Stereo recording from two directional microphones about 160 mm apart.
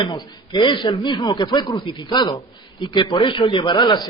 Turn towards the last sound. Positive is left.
turn(degrees=30)  # may be behind; listen again after turning